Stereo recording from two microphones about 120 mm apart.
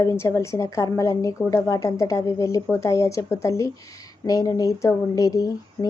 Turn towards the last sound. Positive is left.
turn(degrees=30)  # may be behind; listen again after turning